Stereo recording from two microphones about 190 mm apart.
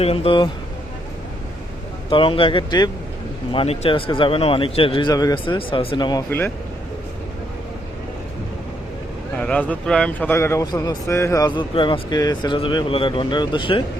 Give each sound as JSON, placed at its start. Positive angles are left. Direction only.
{"t": 0.0, "sound": "a man's voice", "side_deg": 30}
{"t": 2.0, "sound": "a man's voice", "side_deg": 25}
{"t": 9.4, "sound": "a man's voice", "side_deg": 5}